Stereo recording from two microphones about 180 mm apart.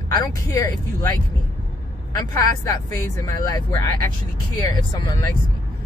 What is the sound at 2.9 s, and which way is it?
Speech, 20° left (ahead or behind).